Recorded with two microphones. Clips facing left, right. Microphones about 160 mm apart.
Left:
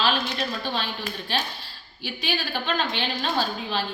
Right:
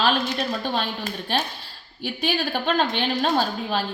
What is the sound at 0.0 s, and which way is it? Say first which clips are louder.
A woman's voice: right 3 dB; 50° right (ahead or behind).